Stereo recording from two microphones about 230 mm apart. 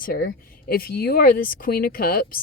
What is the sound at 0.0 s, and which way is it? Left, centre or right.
A woman's voice, left.